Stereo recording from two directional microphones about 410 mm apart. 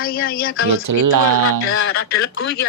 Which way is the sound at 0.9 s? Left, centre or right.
Right.